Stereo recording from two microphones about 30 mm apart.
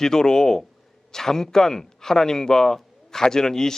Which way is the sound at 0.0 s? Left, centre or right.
Centre.